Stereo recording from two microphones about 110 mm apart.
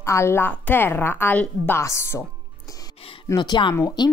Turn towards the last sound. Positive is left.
turn(degrees=40)  # may be behind; listen again after turning